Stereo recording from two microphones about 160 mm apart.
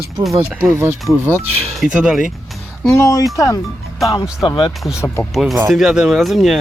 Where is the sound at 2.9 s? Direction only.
20° left (ahead or behind).